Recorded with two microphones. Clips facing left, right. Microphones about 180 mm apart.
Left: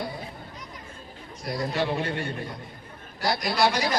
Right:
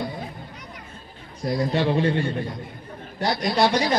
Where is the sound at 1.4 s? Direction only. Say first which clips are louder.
Right 5 dB; 30° right (ahead or behind).